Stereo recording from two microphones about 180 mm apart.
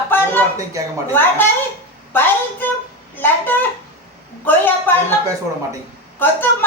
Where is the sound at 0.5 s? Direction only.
20° right (ahead or behind).